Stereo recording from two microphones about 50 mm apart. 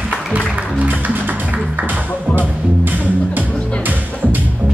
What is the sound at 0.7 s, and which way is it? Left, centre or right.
Music, right.